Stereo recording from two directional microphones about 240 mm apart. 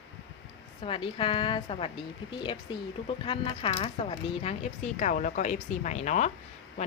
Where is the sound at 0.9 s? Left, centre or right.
Left.